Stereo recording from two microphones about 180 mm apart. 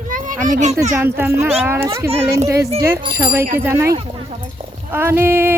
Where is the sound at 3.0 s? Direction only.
20° right (ahead or behind).